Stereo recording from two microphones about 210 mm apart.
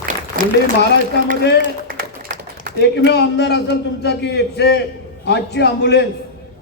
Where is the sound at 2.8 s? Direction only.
55° left (ahead or behind).